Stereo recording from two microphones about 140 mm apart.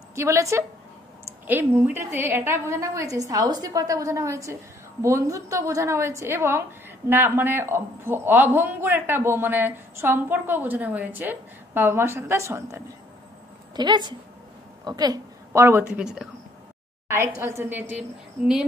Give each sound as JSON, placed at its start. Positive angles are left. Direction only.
{"t": 0.1, "sound": "a woman's voice", "side_deg": -20}
{"t": 13.7, "sound": "a woman's voice", "side_deg": -30}
{"t": 16.0, "sound": "speech", "side_deg": -5}
{"t": 17.1, "sound": "a man's voice", "side_deg": -20}